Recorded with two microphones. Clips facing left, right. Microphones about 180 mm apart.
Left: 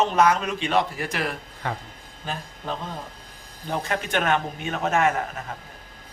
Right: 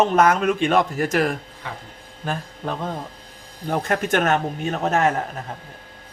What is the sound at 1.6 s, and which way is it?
Speech, 55° left (ahead or behind).